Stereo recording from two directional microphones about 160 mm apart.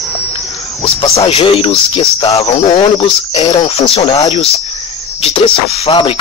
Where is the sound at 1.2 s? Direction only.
35° left (ahead or behind).